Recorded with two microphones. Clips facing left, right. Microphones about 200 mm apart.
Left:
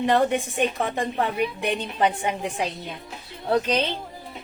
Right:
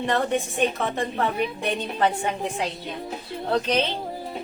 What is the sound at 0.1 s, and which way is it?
A woman's voice, 15° left (ahead or behind).